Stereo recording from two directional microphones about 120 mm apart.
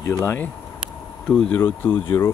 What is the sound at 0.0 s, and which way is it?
Speech, 25° left (ahead or behind).